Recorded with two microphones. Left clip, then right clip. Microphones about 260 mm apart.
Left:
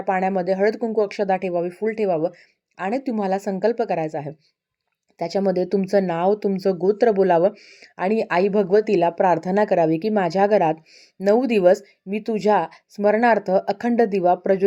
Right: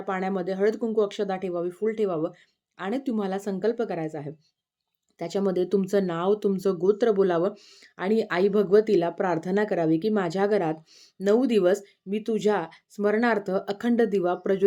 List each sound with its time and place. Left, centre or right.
0.0 s speech: centre